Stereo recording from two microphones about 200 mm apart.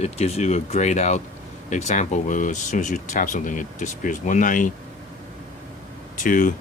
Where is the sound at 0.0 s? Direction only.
30° left (ahead or behind).